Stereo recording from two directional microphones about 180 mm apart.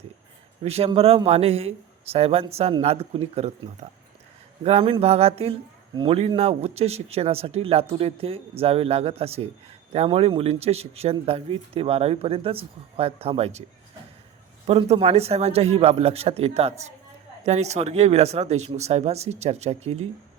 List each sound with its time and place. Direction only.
0.6 s a man's voice: 35° right (ahead or behind)
14.7 s a man's voice: 35° right (ahead or behind)